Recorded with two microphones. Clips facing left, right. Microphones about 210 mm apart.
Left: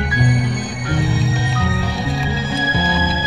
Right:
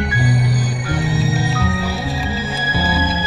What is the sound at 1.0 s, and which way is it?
Music, centre (ahead or behind).